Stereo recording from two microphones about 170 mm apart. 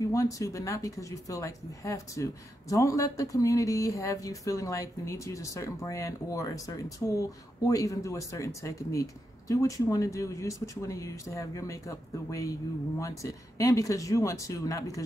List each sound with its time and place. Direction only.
0.0 s speech: 20° left (ahead or behind)